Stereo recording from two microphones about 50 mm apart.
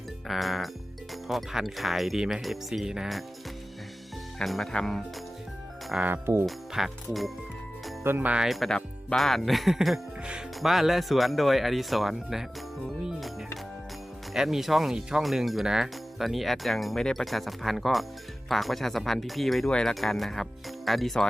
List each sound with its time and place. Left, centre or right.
0.3 s speech: centre
4.4 s speech: centre
6.1 s speech: right
6.7 s speech: centre
8.1 s speech: right
8.4 s speech: centre
14.3 s speech: centre